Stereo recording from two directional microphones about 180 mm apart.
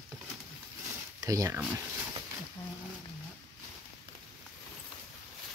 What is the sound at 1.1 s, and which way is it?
Speech, 20° right (ahead or behind).